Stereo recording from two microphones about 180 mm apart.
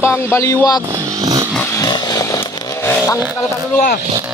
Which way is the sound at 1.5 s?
15° left (ahead or behind).